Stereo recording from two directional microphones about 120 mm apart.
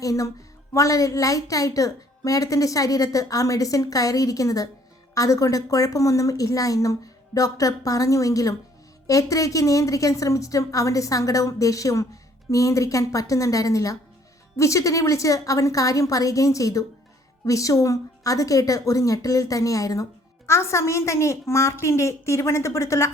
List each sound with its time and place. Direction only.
0.0 s a woman's voice: 30° left (ahead or behind)